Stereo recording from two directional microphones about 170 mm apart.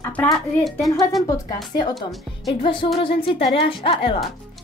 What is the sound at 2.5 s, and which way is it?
Speech, 30° left (ahead or behind).